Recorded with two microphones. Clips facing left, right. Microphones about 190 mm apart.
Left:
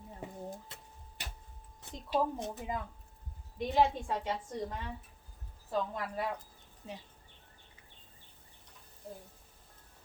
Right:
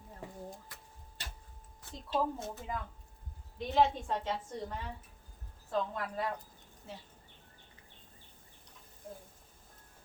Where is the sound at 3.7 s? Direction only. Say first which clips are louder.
Even; 10° left (ahead or behind).